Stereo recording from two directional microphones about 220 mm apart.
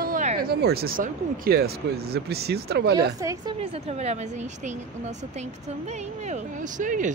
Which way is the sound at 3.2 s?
15° right (ahead or behind).